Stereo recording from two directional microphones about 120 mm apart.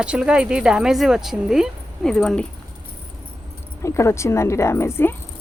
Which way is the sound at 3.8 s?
25° left (ahead or behind).